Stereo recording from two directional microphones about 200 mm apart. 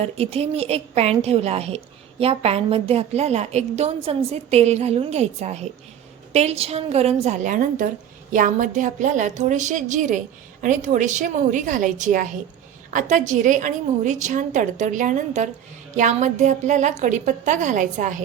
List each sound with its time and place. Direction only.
0.0 s a woman's voice: 30° right (ahead or behind)